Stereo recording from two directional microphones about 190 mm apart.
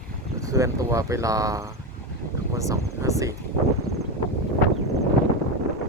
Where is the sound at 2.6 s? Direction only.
15° right (ahead or behind).